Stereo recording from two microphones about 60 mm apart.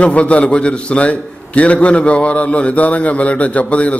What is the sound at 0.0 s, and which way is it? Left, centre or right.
A man's voice, left.